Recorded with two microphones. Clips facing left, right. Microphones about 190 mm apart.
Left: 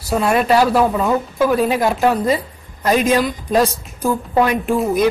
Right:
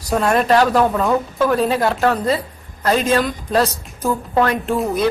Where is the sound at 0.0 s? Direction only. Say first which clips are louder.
Even; 5° left (ahead or behind).